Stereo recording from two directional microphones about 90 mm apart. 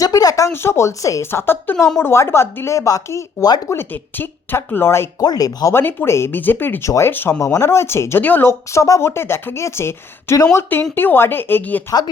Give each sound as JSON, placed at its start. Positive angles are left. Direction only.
{"t": 0.0, "sound": "a woman's voice", "side_deg": 40}
{"t": 5.2, "sound": "speech", "side_deg": 50}
{"t": 5.7, "sound": "a woman's voice", "side_deg": 25}